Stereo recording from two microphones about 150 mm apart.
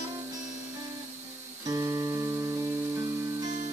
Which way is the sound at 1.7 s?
20° right (ahead or behind).